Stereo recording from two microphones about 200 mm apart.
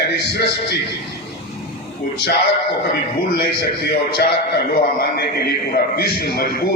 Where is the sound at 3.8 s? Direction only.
50° left (ahead or behind).